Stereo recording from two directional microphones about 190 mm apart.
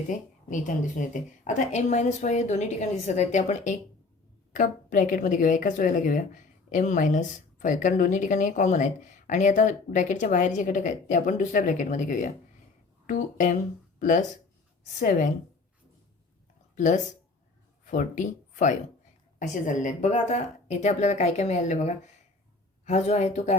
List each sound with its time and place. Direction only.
0.1 s speech: 40° left (ahead or behind)
16.7 s speech: 40° left (ahead or behind)